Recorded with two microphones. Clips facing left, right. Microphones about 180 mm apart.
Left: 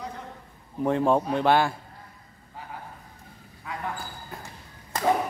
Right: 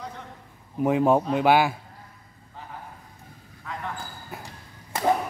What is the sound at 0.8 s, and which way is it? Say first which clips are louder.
Speech: right 2 dB; 5° right (ahead or behind).